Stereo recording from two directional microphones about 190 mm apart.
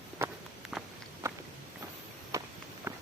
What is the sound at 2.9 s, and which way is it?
Clip-clop, 15° right (ahead or behind).